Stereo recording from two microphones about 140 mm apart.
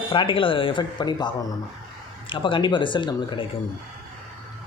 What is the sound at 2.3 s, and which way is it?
Speech, 35° left (ahead or behind).